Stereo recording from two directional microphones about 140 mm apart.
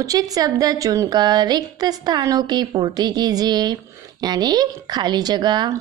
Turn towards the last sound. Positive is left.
turn(degrees=-30)  # may be behind; listen again after turning